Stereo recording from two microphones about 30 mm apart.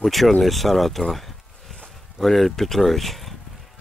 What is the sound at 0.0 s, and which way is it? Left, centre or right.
Speech, centre.